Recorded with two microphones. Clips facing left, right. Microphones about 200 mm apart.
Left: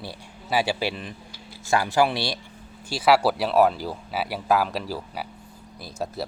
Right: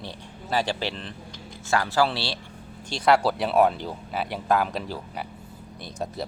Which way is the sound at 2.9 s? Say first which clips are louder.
Left 1 dB; 5° left (ahead or behind).